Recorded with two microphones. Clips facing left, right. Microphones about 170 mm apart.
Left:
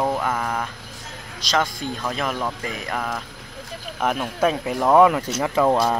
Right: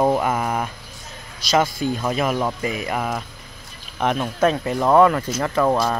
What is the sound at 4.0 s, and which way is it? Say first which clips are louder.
Speech: right 2 dB; 5° left (ahead or behind).